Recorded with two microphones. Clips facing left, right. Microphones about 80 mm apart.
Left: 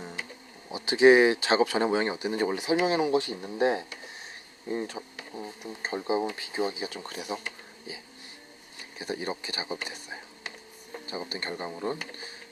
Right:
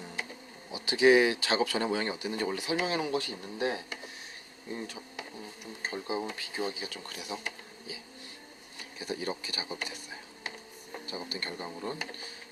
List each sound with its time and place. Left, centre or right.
0.7 s speech: left
9.0 s speech: left